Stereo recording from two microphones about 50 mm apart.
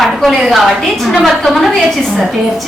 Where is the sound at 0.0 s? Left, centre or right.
Centre.